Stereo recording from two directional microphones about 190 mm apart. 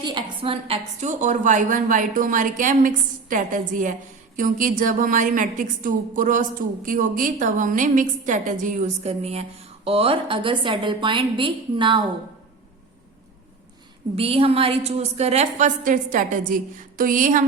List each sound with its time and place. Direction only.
0.0 s a woman's voice: 25° right (ahead or behind)
14.2 s a woman's voice: 30° right (ahead or behind)